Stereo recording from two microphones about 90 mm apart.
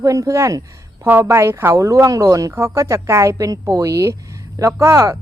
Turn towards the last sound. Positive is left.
turn(degrees=-35)  # may be behind; listen again after turning